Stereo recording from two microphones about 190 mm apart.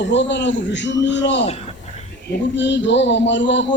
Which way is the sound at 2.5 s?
70° left (ahead or behind).